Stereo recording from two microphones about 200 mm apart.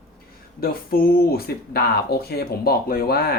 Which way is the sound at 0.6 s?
45° left (ahead or behind).